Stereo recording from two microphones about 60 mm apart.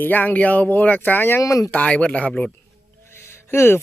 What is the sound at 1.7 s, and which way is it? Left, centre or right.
Speech, left.